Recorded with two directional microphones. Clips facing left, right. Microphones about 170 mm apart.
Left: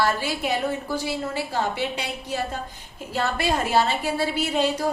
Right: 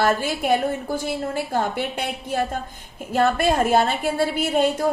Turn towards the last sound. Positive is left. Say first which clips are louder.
# right 3 dB
turn(degrees=-50)  # may be behind; listen again after turning